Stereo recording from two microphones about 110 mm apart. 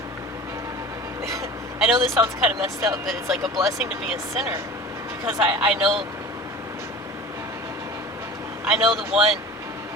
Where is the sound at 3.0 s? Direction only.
Centre (ahead or behind).